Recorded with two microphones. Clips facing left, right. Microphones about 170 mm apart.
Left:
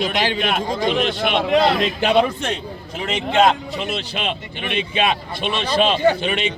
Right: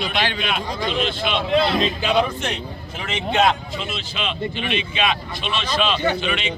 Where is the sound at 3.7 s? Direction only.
60° left (ahead or behind).